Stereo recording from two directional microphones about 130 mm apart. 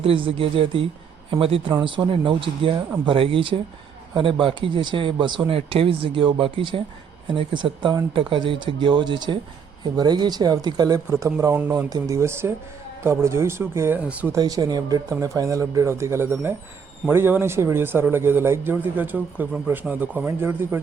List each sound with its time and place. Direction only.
0.0 s a man's voice: 45° right (ahead or behind); by 14.3 s 10° right (ahead or behind)
14.3 s a man's voice: 25° right (ahead or behind)